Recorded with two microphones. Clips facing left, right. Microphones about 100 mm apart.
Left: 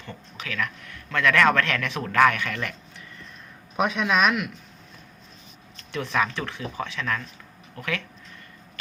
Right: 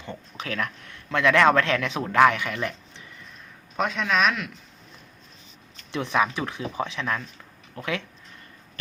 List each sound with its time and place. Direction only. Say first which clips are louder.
0.1 s speech: right 3 dB; 30° right (ahead or behind)
1.1 s a man's voice: right 2 dB; 20° right (ahead or behind)
3.8 s a man's voice: left 1 dB; 10° left (ahead or behind)
5.9 s a man's voice: right 2 dB; 20° right (ahead or behind)